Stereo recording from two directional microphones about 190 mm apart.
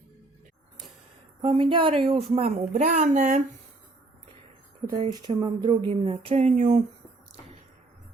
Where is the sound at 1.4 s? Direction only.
25° right (ahead or behind).